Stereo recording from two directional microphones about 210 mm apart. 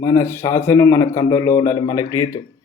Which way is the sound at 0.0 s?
10° left (ahead or behind).